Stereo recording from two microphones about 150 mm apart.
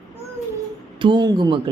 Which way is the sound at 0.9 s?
30° right (ahead or behind).